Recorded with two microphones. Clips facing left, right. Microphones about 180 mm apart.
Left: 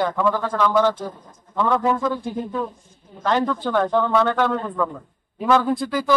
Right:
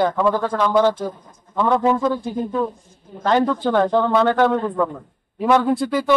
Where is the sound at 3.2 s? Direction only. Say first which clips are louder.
Right 3 dB; 30° right (ahead or behind).